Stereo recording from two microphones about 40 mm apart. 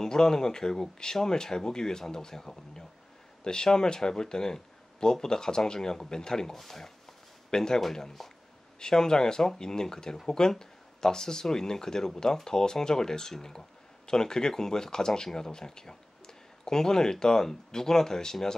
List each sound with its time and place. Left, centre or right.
0.0 s speech: centre